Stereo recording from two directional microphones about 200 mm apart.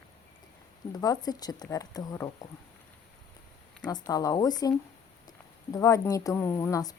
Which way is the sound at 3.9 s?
20° left (ahead or behind).